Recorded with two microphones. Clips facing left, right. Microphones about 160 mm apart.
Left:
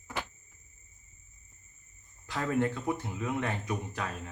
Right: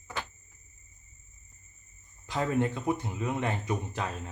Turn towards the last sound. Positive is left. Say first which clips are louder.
# right 2 dB
turn(degrees=-25)  # may be behind; listen again after turning